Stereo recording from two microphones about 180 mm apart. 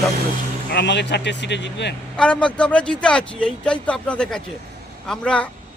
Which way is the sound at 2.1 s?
5° left (ahead or behind).